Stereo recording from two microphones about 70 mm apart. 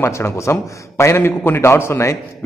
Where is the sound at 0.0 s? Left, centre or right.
Left.